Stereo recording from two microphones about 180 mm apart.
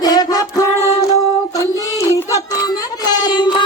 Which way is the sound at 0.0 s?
20° left (ahead or behind).